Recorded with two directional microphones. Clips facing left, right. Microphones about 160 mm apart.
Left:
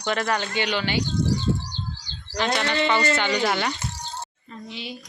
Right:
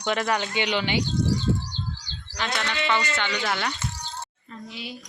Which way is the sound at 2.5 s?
35° left (ahead or behind).